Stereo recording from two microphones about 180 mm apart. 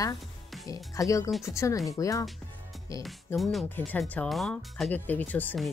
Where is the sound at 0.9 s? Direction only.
20° left (ahead or behind).